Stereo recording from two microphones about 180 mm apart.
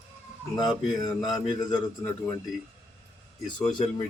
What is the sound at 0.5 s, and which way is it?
Speech, 25° left (ahead or behind).